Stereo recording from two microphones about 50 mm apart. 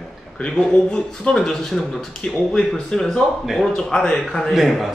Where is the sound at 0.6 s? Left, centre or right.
Centre.